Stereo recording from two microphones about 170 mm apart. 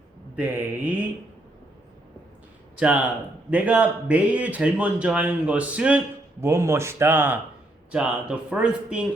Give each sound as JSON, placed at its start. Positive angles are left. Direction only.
{"t": 0.3, "sound": "a man's voice", "side_deg": -10}
{"t": 2.7, "sound": "a man's voice", "side_deg": -5}